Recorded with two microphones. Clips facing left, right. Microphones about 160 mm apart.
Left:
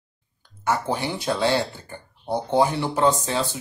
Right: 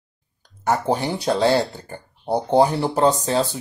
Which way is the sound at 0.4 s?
40° right (ahead or behind).